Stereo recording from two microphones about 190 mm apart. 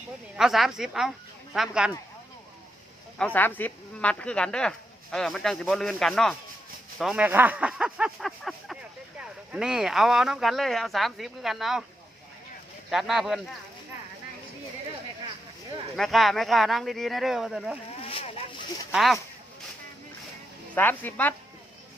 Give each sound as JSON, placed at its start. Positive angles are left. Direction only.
{"t": 0.3, "sound": "speech", "side_deg": 0}
{"t": 3.2, "sound": "speech", "side_deg": 10}
{"t": 12.9, "sound": "speech", "side_deg": 0}
{"t": 16.0, "sound": "speech", "side_deg": 0}
{"t": 18.0, "sound": "speech", "side_deg": 30}
{"t": 18.9, "sound": "speech", "side_deg": 0}
{"t": 20.7, "sound": "speech", "side_deg": 10}